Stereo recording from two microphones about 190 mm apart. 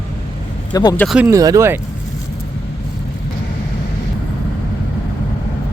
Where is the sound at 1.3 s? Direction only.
15° right (ahead or behind).